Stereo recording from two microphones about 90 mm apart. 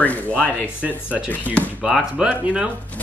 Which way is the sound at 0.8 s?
15° right (ahead or behind).